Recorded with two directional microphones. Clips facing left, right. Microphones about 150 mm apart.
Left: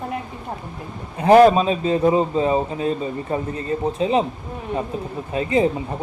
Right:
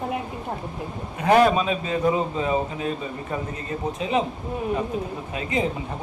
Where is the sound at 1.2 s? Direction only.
35° left (ahead or behind).